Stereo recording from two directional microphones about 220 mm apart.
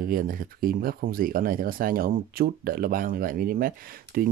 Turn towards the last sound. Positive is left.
turn(degrees=-40)  # may be behind; listen again after turning